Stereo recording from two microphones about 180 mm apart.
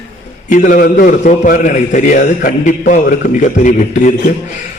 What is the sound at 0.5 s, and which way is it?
A man's voice, 45° left (ahead or behind).